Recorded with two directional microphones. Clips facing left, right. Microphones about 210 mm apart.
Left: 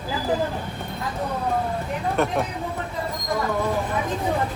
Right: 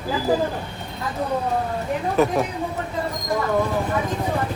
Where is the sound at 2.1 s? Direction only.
Centre (ahead or behind).